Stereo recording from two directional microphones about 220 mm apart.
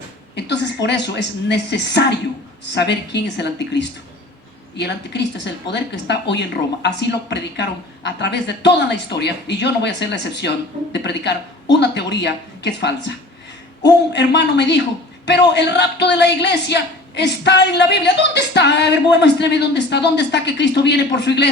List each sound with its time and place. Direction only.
0.3 s a woman's voice: 50° left (ahead or behind)